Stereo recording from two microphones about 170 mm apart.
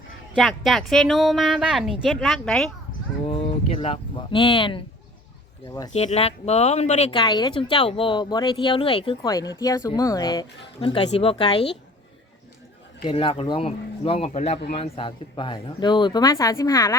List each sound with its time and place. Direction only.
0.3 s speech: centre (ahead or behind)
3.2 s speech: 30° left (ahead or behind)
5.9 s speech: 40° left (ahead or behind)
7.1 s speech: 25° left (ahead or behind)
9.3 s speech: 20° left (ahead or behind)
13.1 s speech: 30° left (ahead or behind)